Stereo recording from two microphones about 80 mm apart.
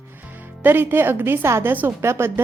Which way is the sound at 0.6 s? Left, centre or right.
Right.